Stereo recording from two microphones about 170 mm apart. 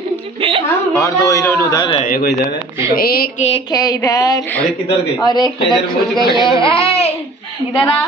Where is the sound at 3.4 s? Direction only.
35° left (ahead or behind).